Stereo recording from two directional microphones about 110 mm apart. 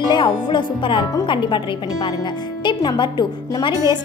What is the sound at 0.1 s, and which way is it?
A woman's voice, 45° left (ahead or behind).